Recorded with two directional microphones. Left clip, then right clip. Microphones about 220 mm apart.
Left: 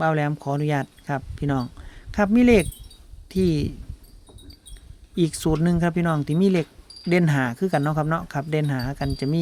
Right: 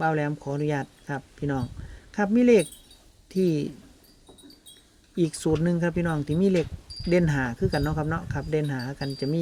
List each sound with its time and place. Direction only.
0.0 s speech: 30° left (ahead or behind)
5.1 s speech: 30° left (ahead or behind)